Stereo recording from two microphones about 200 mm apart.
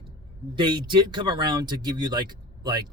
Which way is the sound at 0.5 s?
25° right (ahead or behind).